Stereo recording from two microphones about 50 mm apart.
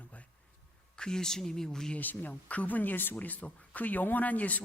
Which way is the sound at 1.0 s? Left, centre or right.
Centre.